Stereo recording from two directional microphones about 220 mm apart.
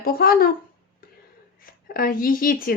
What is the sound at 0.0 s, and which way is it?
Speech, 40° left (ahead or behind).